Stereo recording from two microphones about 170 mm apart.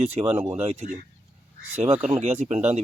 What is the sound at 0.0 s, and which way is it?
Speech, 40° right (ahead or behind).